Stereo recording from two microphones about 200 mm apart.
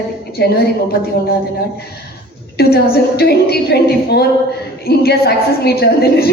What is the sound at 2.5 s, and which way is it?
A woman's voice, 50° left (ahead or behind).